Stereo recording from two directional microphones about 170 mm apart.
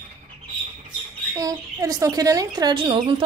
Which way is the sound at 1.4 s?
20° right (ahead or behind).